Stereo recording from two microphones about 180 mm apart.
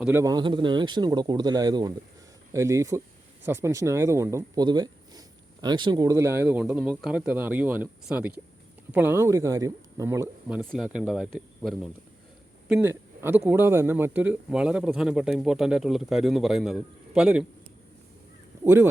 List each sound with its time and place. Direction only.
0.0 s a man's voice: 15° right (ahead or behind)
18.6 s speech: 15° right (ahead or behind)